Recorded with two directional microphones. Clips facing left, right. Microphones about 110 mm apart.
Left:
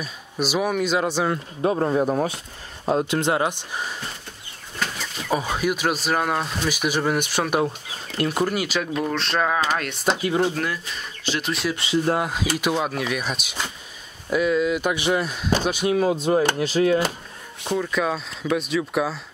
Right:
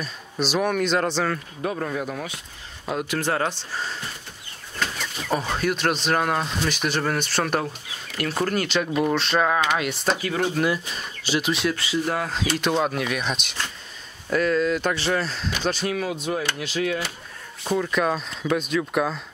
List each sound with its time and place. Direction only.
0.0 s speech: 10° left (ahead or behind)
1.6 s speech: 30° left (ahead or behind); by 4.0 s 15° left (ahead or behind)
5.3 s speech: 5° left (ahead or behind)
7.6 s speech: 25° left (ahead or behind)
8.3 s speech: 10° left (ahead or behind)
10.0 s speech: 20° left (ahead or behind)
10.5 s speech: 15° right (ahead or behind)
11.7 s speech: 25° left (ahead or behind)
12.3 s speech: 10° left (ahead or behind)
15.9 s speech: 30° left (ahead or behind)
17.6 s speech: centre (ahead or behind)